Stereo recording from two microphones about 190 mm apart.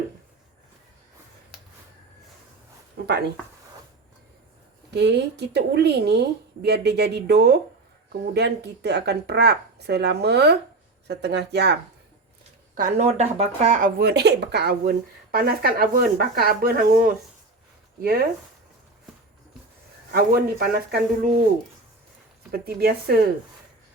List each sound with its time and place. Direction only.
3.0 s speech: 60° right (ahead or behind)
4.9 s speech: 60° right (ahead or behind)
12.7 s speech: 40° right (ahead or behind)
14.0 s speech: 60° right (ahead or behind); by 17.2 s 45° right (ahead or behind)
20.1 s speech: 55° right (ahead or behind)
22.5 s speech: 55° right (ahead or behind)